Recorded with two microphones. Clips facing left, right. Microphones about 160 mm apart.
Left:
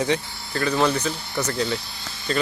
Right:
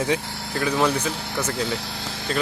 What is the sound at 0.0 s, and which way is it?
Speech, 5° right (ahead or behind).